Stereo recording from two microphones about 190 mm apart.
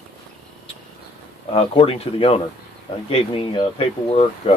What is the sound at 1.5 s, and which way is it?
Speech, 30° left (ahead or behind).